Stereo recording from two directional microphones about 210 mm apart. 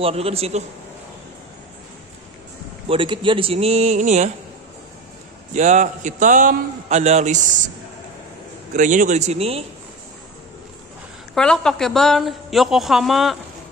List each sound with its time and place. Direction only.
0.0 s a man's voice: 30° right (ahead or behind)
2.9 s a man's voice: 25° right (ahead or behind)
5.5 s a man's voice: 35° right (ahead or behind)
8.7 s a man's voice: 35° right (ahead or behind)
11.3 s a woman's voice: 5° left (ahead or behind)